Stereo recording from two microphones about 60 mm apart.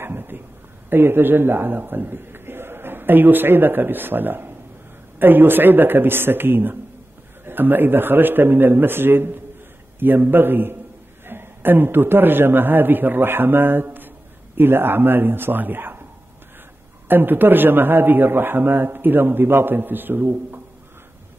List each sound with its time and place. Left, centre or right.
0.0 s a man's voice: right
17.1 s a man's voice: right